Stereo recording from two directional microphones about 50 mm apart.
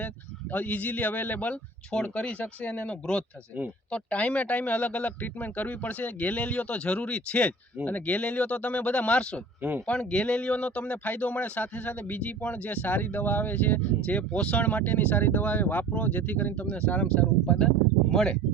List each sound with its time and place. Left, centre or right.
0.5 s speech: left
1.9 s speech: left
18.1 s speech: centre